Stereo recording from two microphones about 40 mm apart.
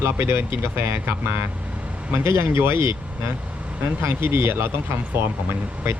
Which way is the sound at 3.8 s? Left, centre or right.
Right.